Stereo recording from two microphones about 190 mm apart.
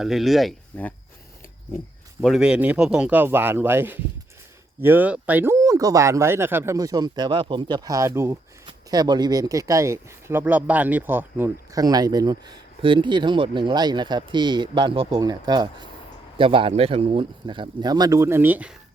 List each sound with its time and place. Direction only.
0.0 s speech: centre (ahead or behind)
2.2 s speech: centre (ahead or behind)